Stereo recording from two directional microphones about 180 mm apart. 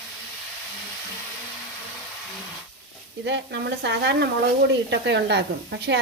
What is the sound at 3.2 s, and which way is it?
Speech, 75° right (ahead or behind).